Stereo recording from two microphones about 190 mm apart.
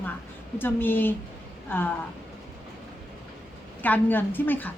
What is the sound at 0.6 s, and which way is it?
Speech, 10° left (ahead or behind).